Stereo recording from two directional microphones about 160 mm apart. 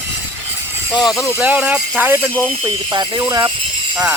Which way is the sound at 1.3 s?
5° right (ahead or behind).